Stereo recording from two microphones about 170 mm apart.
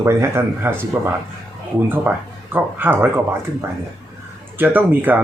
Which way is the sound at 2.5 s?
10° right (ahead or behind).